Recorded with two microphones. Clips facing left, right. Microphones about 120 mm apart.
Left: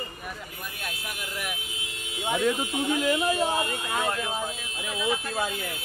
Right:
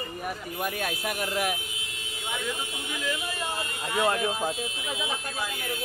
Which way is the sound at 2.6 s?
40° left (ahead or behind).